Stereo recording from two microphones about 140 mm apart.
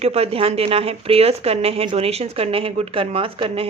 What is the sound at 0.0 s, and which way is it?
Speech, 45° right (ahead or behind).